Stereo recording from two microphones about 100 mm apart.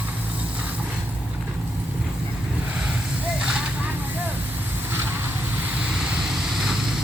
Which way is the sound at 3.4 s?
10° right (ahead or behind).